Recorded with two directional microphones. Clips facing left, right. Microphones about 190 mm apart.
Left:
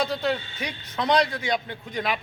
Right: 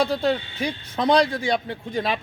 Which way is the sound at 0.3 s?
30° right (ahead or behind).